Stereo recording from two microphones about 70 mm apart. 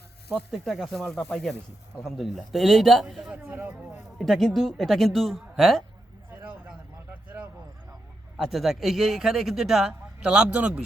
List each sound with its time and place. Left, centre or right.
0.5 s speech: centre
3.5 s speech: right
4.2 s speech: centre
6.3 s a sound: right
8.4 s speech: centre